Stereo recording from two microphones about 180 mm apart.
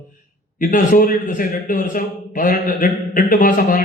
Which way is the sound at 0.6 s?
50° left (ahead or behind).